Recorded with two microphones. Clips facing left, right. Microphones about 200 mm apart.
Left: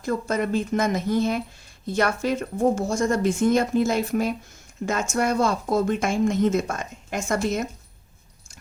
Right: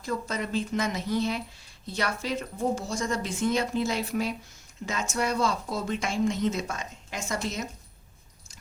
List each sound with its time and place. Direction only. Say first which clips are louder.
0.0 s speech: left 7 dB; 50° left (ahead or behind)